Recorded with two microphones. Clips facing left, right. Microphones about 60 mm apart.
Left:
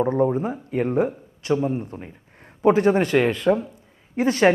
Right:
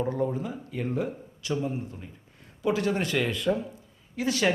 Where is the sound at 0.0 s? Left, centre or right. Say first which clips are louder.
Left 8 dB; left.